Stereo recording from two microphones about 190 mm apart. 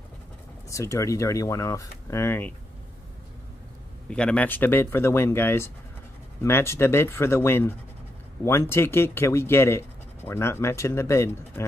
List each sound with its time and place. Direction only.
0.7 s speech: 15° left (ahead or behind)
4.1 s speech: 5° left (ahead or behind)